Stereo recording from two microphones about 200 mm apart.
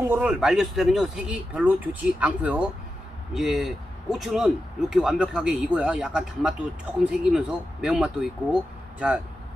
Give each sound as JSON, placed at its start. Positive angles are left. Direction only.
{"t": 0.1, "sound": "speech", "side_deg": -5}